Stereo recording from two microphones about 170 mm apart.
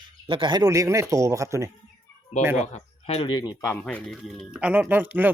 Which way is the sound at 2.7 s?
35° left (ahead or behind).